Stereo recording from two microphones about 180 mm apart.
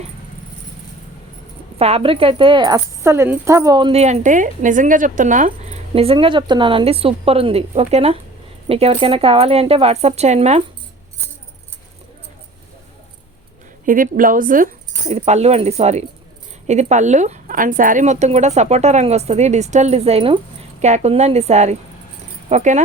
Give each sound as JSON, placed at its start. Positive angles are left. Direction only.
{"t": 1.8, "sound": "speech", "side_deg": -35}
{"t": 4.0, "sound": "speech", "side_deg": -40}
{"t": 13.8, "sound": "speech", "side_deg": -50}